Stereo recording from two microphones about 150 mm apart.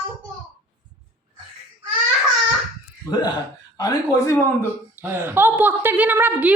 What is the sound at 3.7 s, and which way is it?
Speech, 25° left (ahead or behind).